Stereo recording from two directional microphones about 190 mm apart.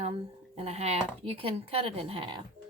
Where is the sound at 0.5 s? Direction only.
35° right (ahead or behind).